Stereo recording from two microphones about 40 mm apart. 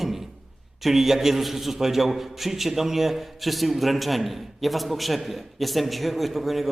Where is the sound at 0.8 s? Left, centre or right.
Centre.